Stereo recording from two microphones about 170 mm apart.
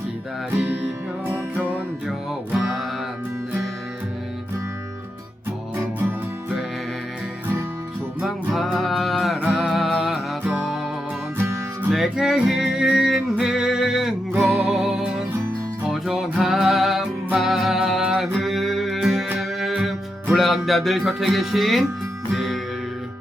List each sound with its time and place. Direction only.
2.6 s music: 5° right (ahead or behind)
8.2 s music: centre (ahead or behind)
11.9 s music: centre (ahead or behind)